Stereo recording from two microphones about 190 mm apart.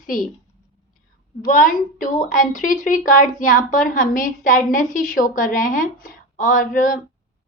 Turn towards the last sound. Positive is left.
turn(degrees=45)  # may be behind; listen again after turning